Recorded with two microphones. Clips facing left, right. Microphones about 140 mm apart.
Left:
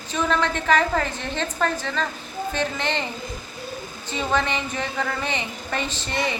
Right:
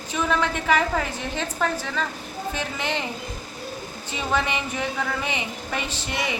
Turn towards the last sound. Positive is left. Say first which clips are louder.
# left 2 dB
turn(degrees=-10)  # may be behind; listen again after turning